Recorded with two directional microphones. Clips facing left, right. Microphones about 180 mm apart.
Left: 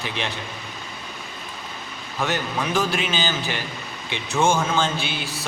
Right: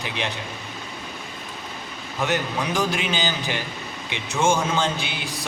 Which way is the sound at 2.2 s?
15° right (ahead or behind).